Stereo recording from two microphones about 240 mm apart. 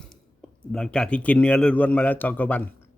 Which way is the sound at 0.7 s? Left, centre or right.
Centre.